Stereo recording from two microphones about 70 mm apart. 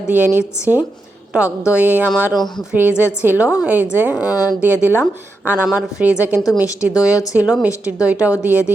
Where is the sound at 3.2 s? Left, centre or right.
Right.